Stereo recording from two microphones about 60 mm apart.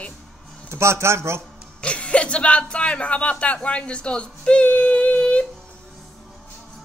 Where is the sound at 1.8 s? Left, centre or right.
Centre.